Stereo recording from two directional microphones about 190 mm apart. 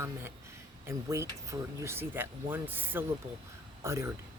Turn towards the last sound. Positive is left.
turn(degrees=-15)  # may be behind; listen again after turning